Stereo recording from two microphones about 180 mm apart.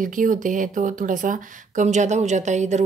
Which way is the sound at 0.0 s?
45° right (ahead or behind).